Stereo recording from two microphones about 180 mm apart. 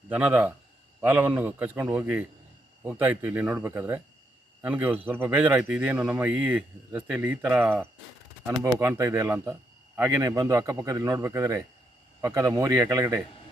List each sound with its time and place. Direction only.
0.1 s speech: 10° right (ahead or behind)